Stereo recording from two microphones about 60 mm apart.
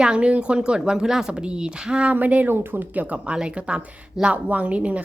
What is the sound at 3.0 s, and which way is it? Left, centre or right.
A woman's voice, right.